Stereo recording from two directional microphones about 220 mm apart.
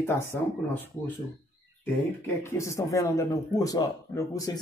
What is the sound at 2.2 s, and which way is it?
Speech, 10° left (ahead or behind).